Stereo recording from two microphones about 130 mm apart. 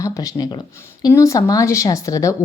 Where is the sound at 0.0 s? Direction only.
25° left (ahead or behind).